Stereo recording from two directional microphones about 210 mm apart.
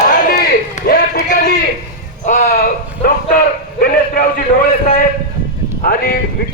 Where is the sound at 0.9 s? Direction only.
45° left (ahead or behind).